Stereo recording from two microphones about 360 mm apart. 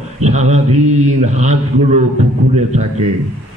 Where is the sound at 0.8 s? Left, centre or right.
Right.